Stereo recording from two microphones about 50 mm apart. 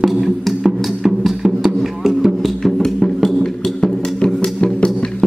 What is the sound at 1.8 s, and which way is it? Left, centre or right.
Music, centre.